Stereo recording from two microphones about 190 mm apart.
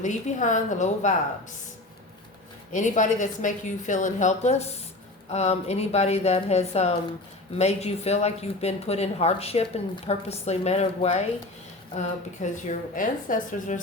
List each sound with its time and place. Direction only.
0.0 s speech: 40° left (ahead or behind)
2.7 s speech: 40° left (ahead or behind)